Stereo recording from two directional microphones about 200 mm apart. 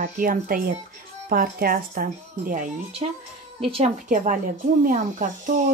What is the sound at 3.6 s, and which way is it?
Speech, 30° right (ahead or behind).